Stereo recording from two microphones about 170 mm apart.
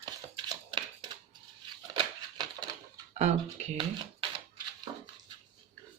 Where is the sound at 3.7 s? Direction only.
30° right (ahead or behind).